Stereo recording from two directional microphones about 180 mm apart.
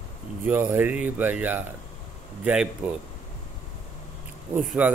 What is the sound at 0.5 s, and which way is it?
Speech, 10° right (ahead or behind).